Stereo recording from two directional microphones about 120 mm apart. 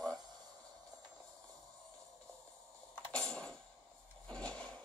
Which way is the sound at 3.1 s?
5° left (ahead or behind).